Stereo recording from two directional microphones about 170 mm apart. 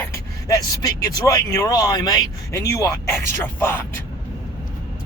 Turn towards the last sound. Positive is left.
turn(degrees=10)  # may be behind; listen again after turning